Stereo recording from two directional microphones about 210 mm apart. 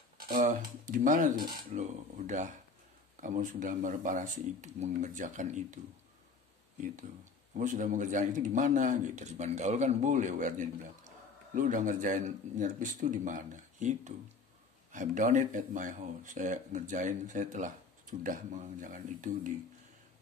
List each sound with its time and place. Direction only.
0.3 s speech: 40° right (ahead or behind)
7.5 s speech: 35° right (ahead or behind)